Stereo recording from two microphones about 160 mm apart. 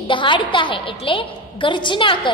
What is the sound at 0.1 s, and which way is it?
A woman's voice, 30° left (ahead or behind).